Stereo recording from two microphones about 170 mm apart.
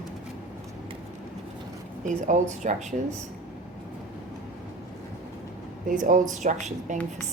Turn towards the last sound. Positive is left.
turn(degrees=-45)  # may be behind; listen again after turning